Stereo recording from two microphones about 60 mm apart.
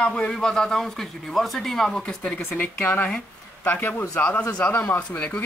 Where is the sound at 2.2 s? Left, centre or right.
Left.